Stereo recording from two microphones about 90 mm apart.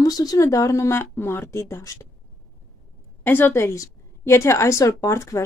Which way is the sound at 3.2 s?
25° left (ahead or behind).